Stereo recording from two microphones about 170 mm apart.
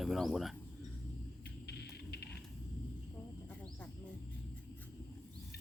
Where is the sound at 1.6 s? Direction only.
75° left (ahead or behind).